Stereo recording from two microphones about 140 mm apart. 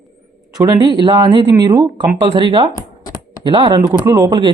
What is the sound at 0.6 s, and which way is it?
Speech, 30° right (ahead or behind).